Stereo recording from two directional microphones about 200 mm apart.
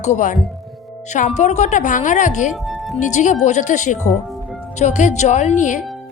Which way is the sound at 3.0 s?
40° left (ahead or behind).